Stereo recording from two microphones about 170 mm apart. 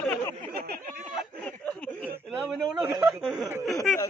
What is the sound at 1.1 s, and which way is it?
Speech, 5° left (ahead or behind).